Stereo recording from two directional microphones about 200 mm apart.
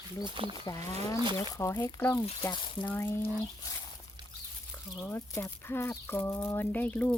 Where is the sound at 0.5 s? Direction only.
20° left (ahead or behind).